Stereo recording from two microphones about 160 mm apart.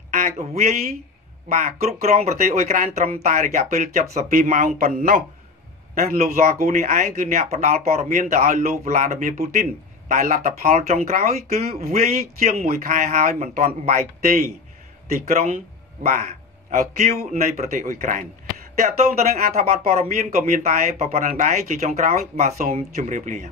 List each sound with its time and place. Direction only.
0.1 s speech: 45° right (ahead or behind); by 5.2 s 60° right (ahead or behind)
6.1 s speech: 45° right (ahead or behind)
15.4 s a sound: 50° right (ahead or behind)
16.7 s speech: 45° right (ahead or behind)